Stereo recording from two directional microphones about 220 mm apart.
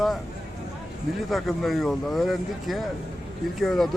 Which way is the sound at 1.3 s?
Centre (ahead or behind).